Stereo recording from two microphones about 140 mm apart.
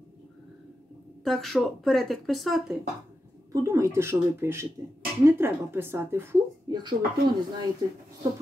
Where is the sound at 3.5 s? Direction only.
20° right (ahead or behind).